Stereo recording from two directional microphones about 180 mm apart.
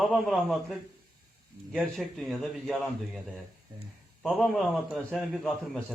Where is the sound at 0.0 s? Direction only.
Centre (ahead or behind).